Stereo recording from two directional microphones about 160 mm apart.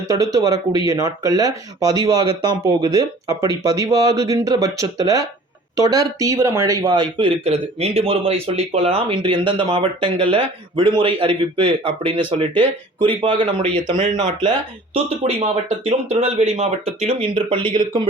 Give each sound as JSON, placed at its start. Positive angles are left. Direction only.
{"t": 0.1, "sound": "a man's voice", "side_deg": -20}